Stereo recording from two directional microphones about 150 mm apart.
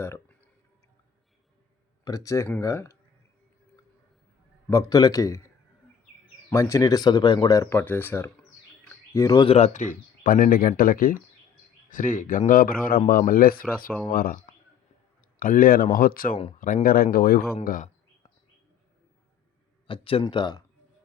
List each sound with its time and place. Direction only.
0.0 s speech: 15° left (ahead or behind)
2.0 s speech: 20° left (ahead or behind)
4.7 s speech: 20° left (ahead or behind)
6.5 s speech: 20° left (ahead or behind)
9.1 s speech: 25° left (ahead or behind)
9.5 s a man's voice: 50° left (ahead or behind); by 17.8 s 70° left (ahead or behind)
19.9 s speech: 40° left (ahead or behind)